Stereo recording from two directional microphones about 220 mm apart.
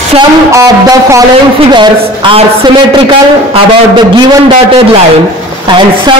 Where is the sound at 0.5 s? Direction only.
15° right (ahead or behind).